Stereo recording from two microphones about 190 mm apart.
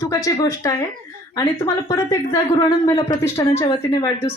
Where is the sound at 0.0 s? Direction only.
15° left (ahead or behind).